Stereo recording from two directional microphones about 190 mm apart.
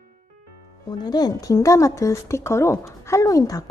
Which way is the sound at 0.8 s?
20° left (ahead or behind).